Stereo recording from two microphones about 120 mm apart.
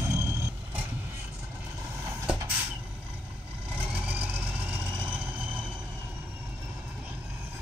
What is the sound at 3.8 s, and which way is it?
Vehicle, 15° right (ahead or behind).